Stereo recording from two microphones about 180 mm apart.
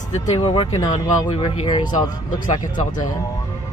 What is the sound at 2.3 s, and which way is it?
Speech, 45° left (ahead or behind).